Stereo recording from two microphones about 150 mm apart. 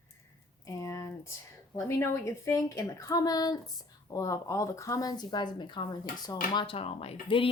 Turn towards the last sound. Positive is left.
turn(degrees=35)  # may be behind; listen again after turning